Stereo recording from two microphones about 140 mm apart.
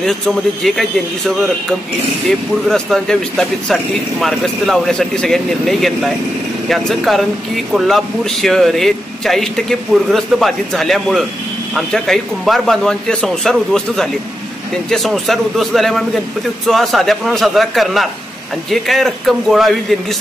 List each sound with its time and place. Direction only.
0.0 s speech: centre (ahead or behind)
2.2 s speech: centre (ahead or behind)